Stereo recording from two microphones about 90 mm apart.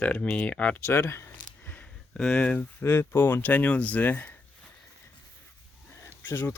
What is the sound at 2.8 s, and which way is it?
Speech, 30° left (ahead or behind).